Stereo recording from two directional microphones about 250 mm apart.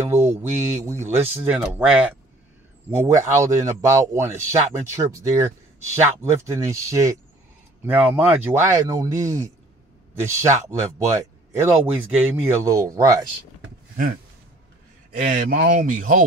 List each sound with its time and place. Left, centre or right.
0.1 s mantra: centre
0.8 s speech: centre
15.2 s speech: right